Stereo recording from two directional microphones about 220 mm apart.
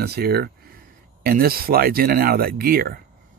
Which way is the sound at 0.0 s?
45° right (ahead or behind).